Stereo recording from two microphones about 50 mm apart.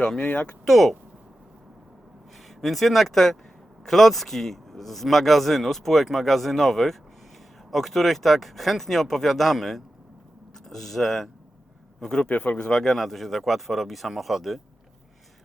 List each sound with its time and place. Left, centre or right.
0.6 s speech: centre
2.6 s speech: centre
12.3 s speech: left
12.7 s speech: centre